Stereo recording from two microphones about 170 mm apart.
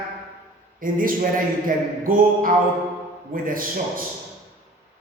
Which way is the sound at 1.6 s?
55° right (ahead or behind).